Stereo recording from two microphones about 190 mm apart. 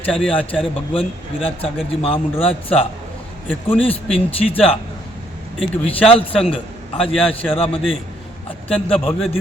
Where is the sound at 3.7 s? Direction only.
10° left (ahead or behind).